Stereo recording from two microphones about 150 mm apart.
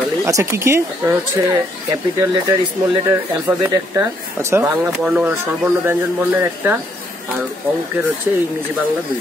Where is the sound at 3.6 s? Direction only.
15° right (ahead or behind).